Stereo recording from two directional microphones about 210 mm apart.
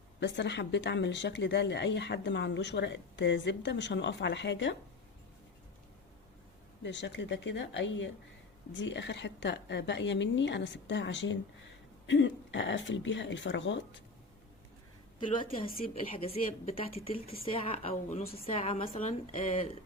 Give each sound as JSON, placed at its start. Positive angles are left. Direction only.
{"t": 0.2, "sound": "a woman's voice", "side_deg": 55}
{"t": 6.8, "sound": "a woman's voice", "side_deg": 55}
{"t": 16.1, "sound": "a woman's voice", "side_deg": 30}